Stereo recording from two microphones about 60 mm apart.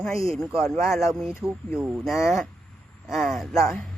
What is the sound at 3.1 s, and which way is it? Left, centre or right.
Speech, centre.